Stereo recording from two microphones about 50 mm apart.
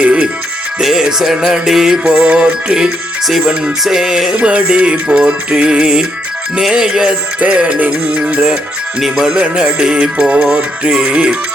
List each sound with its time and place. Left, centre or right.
0.0 s music: right
0.8 s music: centre
2.0 s music: right
3.8 s music: centre